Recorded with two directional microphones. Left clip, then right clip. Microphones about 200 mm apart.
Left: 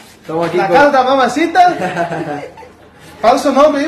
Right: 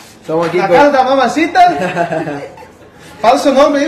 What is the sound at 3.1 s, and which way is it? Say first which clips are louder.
Speech: right 1 dB; 20° left (ahead or behind).